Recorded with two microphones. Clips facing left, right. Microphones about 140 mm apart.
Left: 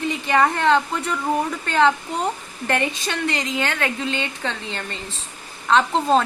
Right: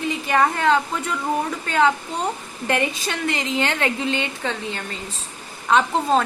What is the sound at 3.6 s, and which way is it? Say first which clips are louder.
A woman's voice: right 2 dB; 20° right (ahead or behind).